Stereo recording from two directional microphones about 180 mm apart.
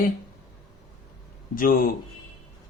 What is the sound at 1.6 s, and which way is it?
Speech, 50° left (ahead or behind).